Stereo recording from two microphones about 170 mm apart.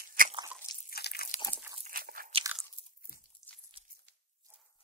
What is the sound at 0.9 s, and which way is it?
Crunch, 70° left (ahead or behind).